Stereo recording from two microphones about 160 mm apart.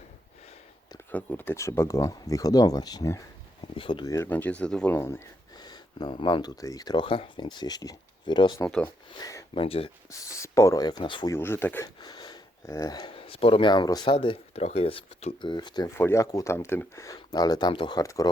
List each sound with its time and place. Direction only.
1.1 s speech: 10° left (ahead or behind); by 4.1 s 30° left (ahead or behind)
4.1 s speech: 15° left (ahead or behind)
9.6 s speech: 35° left (ahead or behind)
10.1 s speech: 20° left (ahead or behind)
11.3 s speech: 15° left (ahead or behind)
12.0 s speech: 30° left (ahead or behind)
16.0 s speech: 15° left (ahead or behind)